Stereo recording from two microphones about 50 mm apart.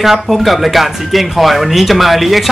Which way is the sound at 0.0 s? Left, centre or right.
Centre.